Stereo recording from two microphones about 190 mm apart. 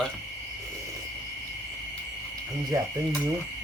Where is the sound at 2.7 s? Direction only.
20° right (ahead or behind).